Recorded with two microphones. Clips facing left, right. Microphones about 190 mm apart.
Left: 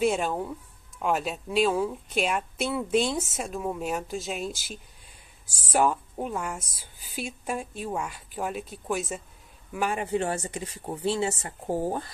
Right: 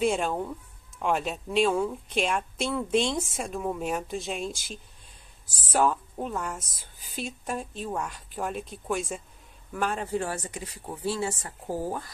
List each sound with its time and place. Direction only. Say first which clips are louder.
0.0 s a woman's voice: left 1 dB; 5° left (ahead or behind); by 12.1 s 25° left (ahead or behind)